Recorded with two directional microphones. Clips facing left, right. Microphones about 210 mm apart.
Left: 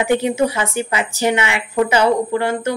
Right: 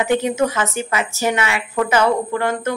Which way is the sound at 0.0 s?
15° left (ahead or behind).